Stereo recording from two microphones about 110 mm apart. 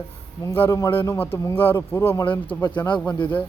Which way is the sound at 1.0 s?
20° left (ahead or behind).